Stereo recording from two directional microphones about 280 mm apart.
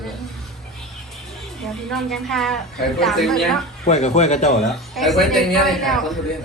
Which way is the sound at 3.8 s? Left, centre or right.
Left.